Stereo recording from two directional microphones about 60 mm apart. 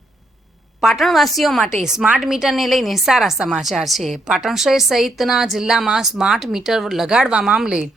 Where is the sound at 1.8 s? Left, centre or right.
Centre.